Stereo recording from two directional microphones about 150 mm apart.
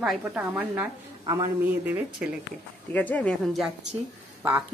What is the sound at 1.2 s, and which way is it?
Speech, 30° right (ahead or behind).